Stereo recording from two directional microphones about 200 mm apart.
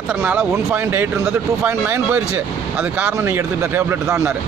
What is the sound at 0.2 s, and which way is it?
Speech, 10° right (ahead or behind).